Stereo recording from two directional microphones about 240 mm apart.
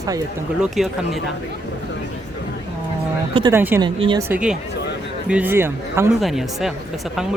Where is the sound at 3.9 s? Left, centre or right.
Right.